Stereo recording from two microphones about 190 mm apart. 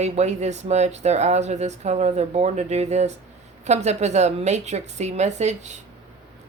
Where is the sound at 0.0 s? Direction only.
35° right (ahead or behind).